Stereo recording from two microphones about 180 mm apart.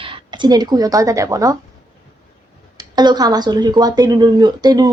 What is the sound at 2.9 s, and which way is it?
A woman's voice, 25° right (ahead or behind).